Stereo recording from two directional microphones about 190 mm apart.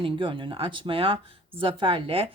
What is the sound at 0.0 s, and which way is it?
Speech, 25° right (ahead or behind).